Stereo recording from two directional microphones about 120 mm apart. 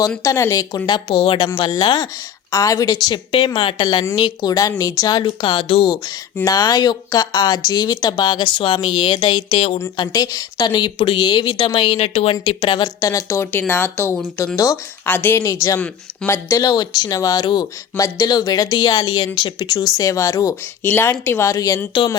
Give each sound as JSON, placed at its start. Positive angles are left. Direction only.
{"t": 0.2, "sound": "speech", "side_deg": 25}
{"t": 0.9, "sound": "speech", "side_deg": 40}
{"t": 6.4, "sound": "speech", "side_deg": 30}
{"t": 10.0, "sound": "speech", "side_deg": 30}